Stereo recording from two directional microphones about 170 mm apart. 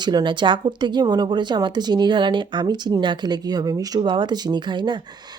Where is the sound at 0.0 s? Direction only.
25° right (ahead or behind).